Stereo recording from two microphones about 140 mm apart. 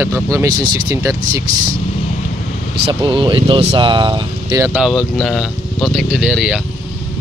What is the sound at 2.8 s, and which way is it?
Speech, 35° right (ahead or behind).